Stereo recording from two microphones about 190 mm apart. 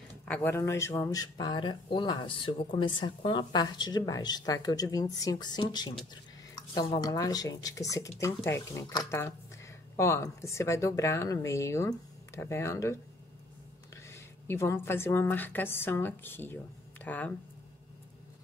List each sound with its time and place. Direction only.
0.2 s a woman's voice: 10° left (ahead or behind)
14.1 s a woman's voice: 15° left (ahead or behind)